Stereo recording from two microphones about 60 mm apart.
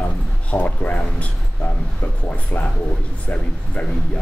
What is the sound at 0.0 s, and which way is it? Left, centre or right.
Speech, left.